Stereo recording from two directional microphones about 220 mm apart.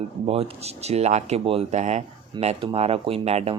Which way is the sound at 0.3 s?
25° right (ahead or behind).